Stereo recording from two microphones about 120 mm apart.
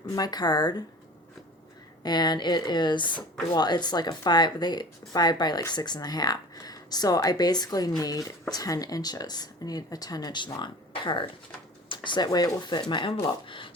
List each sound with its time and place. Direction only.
0.1 s speech: 35° left (ahead or behind)
2.0 s speech: 35° left (ahead or behind)